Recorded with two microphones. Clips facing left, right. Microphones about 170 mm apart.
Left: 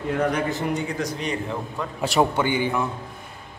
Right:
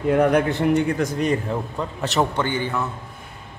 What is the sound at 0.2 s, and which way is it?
A man's voice, 60° right (ahead or behind).